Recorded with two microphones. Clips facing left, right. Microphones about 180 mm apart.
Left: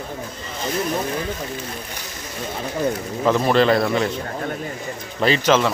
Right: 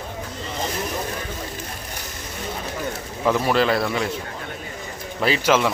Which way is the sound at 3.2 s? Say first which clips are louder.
Left 3 dB; 5° right (ahead or behind).